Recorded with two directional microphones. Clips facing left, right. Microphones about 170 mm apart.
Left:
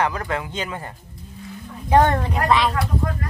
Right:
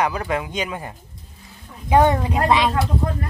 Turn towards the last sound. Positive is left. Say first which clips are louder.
# right 2 dB
turn(degrees=-25)  # may be behind; listen again after turning